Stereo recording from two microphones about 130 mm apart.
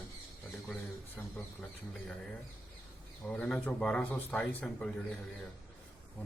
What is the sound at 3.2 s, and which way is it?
A man's voice, 10° left (ahead or behind).